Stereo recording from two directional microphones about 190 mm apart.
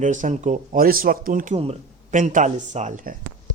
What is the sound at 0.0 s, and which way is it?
Speech, 40° right (ahead or behind).